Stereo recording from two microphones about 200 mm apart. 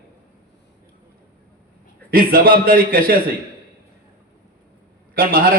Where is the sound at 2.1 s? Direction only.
45° right (ahead or behind).